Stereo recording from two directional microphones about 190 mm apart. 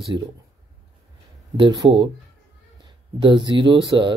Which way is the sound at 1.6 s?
25° right (ahead or behind).